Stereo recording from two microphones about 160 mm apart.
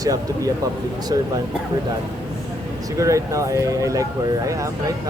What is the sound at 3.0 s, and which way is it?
Speech, 20° right (ahead or behind).